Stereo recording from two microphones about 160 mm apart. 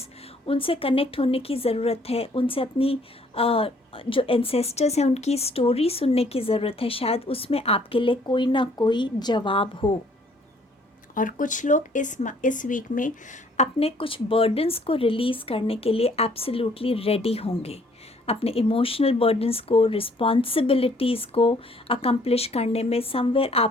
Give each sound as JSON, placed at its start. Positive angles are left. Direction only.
{"t": 0.4, "sound": "speech", "side_deg": 35}
{"t": 11.1, "sound": "speech", "side_deg": 55}
{"t": 13.6, "sound": "speech", "side_deg": 40}